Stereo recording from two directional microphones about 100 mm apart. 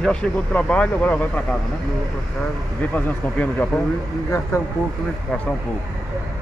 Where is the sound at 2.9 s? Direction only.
20° left (ahead or behind).